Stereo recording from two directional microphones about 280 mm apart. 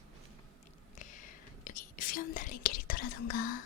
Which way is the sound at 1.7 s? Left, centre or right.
Left.